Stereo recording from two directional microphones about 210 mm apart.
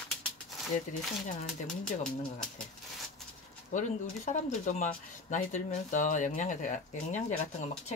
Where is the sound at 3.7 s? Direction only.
35° left (ahead or behind).